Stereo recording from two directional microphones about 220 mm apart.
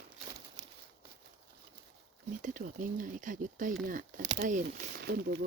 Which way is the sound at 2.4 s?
35° right (ahead or behind).